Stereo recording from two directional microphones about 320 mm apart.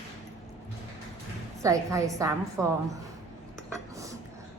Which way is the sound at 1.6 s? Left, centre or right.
Centre.